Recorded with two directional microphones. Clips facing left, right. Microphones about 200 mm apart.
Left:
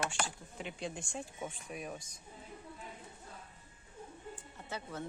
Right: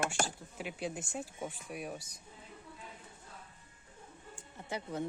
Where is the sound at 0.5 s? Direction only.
5° right (ahead or behind).